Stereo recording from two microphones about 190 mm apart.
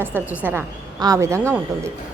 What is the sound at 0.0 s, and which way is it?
A woman's voice, 10° right (ahead or behind).